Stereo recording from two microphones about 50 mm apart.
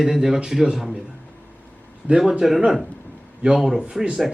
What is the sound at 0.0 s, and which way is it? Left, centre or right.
A man's voice, centre.